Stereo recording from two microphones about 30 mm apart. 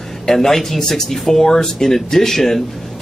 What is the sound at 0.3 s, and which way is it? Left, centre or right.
A man's voice, centre.